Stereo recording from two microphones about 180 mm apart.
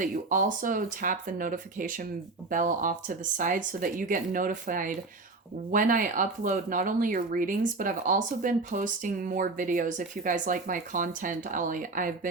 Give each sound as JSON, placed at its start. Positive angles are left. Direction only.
{"t": 0.0, "sound": "speech", "side_deg": -45}